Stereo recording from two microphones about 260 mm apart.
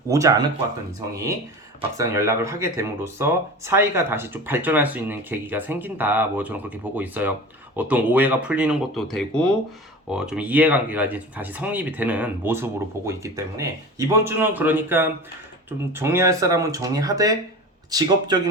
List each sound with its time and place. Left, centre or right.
0.1 s speech: centre